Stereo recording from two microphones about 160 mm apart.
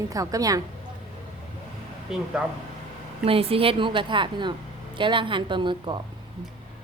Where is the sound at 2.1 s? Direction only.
Centre (ahead or behind).